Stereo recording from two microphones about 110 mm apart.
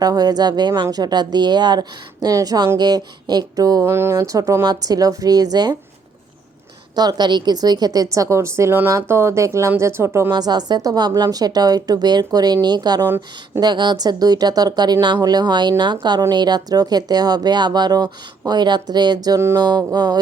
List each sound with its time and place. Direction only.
0.0 s speech: 35° right (ahead or behind)
3.8 s speech: 25° right (ahead or behind)
6.9 s a woman's voice: 40° right (ahead or behind)
10.3 s speech: 40° right (ahead or behind)